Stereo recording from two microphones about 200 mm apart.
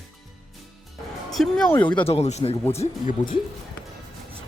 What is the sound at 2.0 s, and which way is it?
Speech, 30° left (ahead or behind).